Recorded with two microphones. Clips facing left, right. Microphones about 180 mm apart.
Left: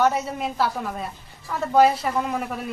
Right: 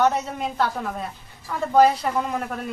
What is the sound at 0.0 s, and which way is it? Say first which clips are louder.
A woman's voice: even; 5° left (ahead or behind).